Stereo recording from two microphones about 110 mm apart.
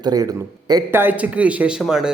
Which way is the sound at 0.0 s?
35° right (ahead or behind).